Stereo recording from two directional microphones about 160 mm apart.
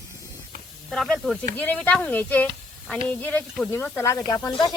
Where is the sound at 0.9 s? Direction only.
5° left (ahead or behind).